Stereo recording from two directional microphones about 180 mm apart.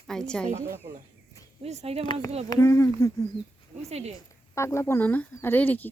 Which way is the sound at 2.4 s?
15° left (ahead or behind).